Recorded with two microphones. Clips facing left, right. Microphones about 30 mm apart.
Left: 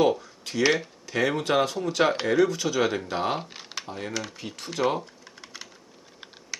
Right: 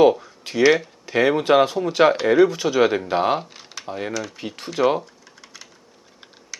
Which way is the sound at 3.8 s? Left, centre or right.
Centre.